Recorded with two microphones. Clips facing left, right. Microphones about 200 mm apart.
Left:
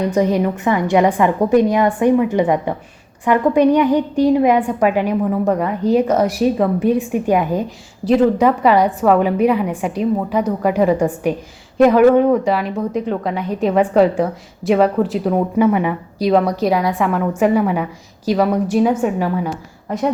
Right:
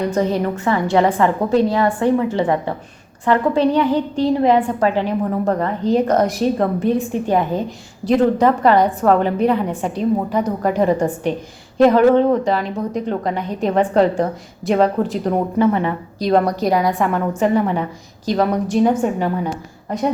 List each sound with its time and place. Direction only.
0.1 s a woman's voice: 15° left (ahead or behind)